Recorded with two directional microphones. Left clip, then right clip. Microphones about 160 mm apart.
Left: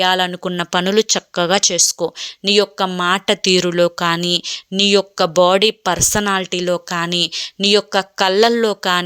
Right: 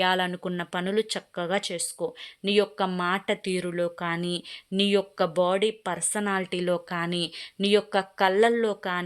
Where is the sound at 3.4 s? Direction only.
40° left (ahead or behind).